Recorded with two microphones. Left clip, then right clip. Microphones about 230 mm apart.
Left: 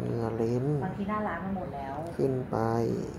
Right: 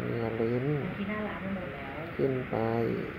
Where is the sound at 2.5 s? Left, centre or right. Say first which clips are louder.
Left 2 dB; left.